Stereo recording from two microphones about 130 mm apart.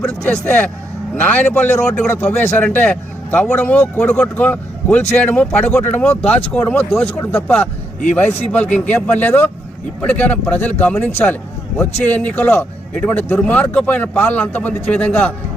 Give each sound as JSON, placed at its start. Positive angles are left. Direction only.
{"t": 0.0, "sound": "a man's voice", "side_deg": 10}